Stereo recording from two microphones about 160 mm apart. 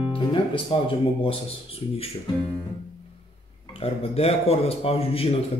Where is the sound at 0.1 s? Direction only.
30° left (ahead or behind).